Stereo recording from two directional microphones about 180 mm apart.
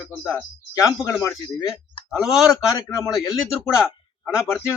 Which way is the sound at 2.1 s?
Centre (ahead or behind).